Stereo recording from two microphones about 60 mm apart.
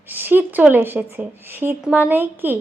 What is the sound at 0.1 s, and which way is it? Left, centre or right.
Speech, right.